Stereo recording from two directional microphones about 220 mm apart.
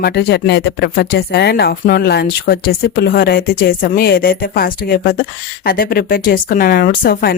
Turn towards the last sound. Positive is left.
turn(degrees=45)  # may be behind; listen again after turning